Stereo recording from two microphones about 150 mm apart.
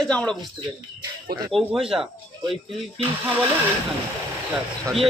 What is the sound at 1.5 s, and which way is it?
Speech, 5° right (ahead or behind).